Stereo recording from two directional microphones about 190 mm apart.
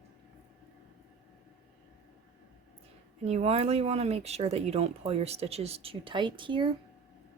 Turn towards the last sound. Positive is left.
turn(degrees=-25)  # may be behind; listen again after turning